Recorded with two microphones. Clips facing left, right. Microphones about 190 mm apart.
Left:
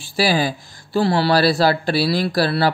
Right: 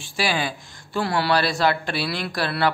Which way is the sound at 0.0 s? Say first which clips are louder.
Left 6 dB; 35° left (ahead or behind).